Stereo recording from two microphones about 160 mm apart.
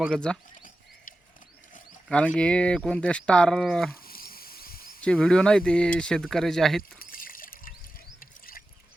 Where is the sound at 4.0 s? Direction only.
70° left (ahead or behind).